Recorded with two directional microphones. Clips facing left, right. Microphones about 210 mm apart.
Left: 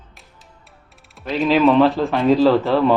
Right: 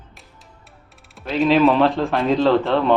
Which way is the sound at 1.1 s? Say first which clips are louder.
Right 1 dB; centre (ahead or behind).